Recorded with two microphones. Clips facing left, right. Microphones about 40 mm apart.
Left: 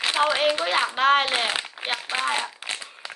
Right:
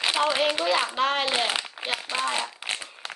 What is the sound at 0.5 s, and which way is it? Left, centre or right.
Speech, left.